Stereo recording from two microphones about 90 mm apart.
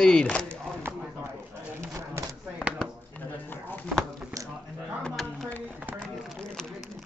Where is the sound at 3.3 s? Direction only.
20° left (ahead or behind).